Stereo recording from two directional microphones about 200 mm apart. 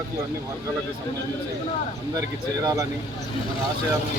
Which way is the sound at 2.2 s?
15° right (ahead or behind).